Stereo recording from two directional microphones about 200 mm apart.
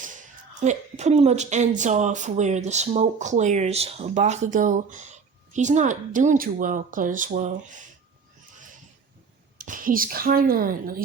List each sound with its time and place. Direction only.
0.6 s speech: 35° right (ahead or behind)
9.6 s speech: 45° right (ahead or behind)